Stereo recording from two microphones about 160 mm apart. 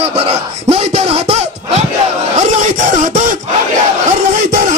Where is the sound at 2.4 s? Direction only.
50° right (ahead or behind).